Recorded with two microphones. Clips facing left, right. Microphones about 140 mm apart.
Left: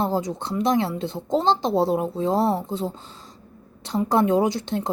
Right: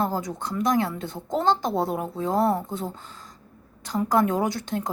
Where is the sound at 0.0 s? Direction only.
25° left (ahead or behind).